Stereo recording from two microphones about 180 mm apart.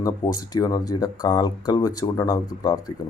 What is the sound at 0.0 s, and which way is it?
Speech, 20° left (ahead or behind).